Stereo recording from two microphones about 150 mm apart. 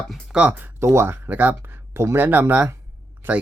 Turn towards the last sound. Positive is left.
turn(degrees=-15)  # may be behind; listen again after turning